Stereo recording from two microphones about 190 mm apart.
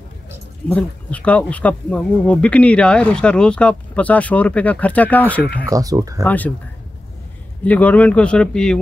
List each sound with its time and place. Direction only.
0.7 s speech: 5° left (ahead or behind)
5.7 s speech: 20° right (ahead or behind)
6.2 s speech: 10° left (ahead or behind)
7.6 s speech: 10° left (ahead or behind)